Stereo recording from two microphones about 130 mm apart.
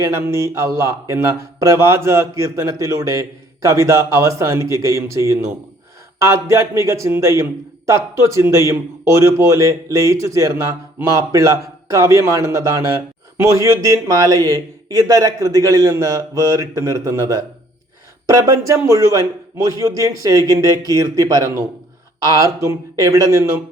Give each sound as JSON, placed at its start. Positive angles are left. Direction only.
{"t": 0.0, "sound": "speech", "side_deg": -20}